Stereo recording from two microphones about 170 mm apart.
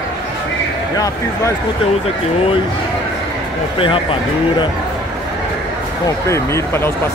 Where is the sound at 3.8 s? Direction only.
30° left (ahead or behind).